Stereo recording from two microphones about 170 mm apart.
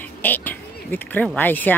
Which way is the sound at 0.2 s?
10° left (ahead or behind).